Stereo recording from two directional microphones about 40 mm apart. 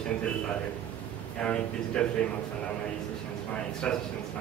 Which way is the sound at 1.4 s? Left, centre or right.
Left.